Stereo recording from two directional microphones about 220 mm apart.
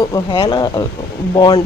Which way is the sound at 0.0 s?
20° left (ahead or behind).